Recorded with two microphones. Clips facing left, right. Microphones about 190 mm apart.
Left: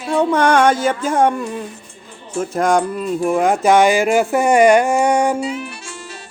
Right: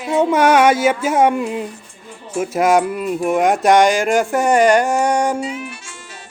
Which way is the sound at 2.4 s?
5° right (ahead or behind).